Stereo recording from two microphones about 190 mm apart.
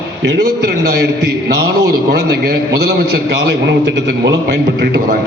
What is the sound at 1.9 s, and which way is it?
A man's voice, 55° right (ahead or behind).